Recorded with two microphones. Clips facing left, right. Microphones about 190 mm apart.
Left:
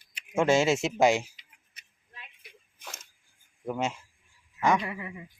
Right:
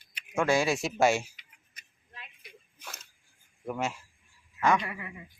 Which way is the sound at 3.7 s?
20° left (ahead or behind).